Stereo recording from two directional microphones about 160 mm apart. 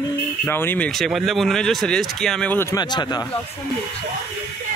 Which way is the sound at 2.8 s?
25° left (ahead or behind).